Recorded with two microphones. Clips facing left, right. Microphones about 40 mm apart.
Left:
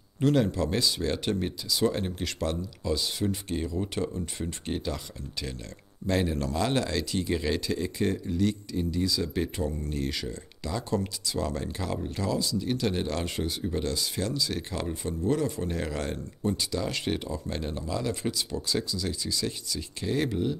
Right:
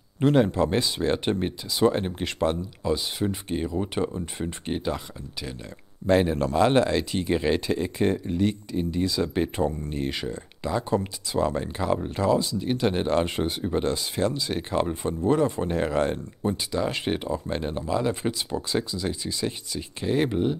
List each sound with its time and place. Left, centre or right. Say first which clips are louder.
0.2 s speech: right 4 dB; right
6.0 s speech: right 6 dB; right